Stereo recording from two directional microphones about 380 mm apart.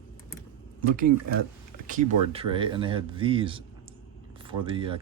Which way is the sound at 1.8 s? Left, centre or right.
Centre.